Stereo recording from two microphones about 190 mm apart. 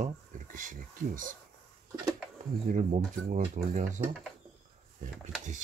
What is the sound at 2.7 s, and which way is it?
Speech, 40° right (ahead or behind).